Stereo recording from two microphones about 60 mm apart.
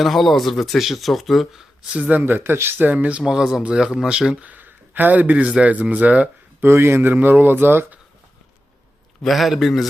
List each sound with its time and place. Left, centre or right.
0.0 s speech: centre
1.9 s speech: right
2.4 s speech: right
3.2 s speech: centre
4.4 s speech: right
6.6 s speech: right
7.1 s speech: right
9.2 s speech: centre